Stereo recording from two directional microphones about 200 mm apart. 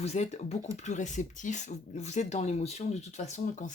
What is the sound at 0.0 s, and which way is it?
Speech, 35° left (ahead or behind).